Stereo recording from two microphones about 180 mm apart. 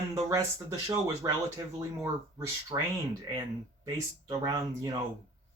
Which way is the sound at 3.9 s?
20° right (ahead or behind).